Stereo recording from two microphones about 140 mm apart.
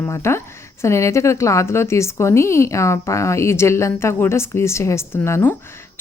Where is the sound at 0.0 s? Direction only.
20° left (ahead or behind).